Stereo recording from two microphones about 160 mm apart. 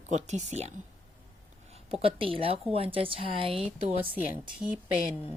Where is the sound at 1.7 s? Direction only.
40° right (ahead or behind).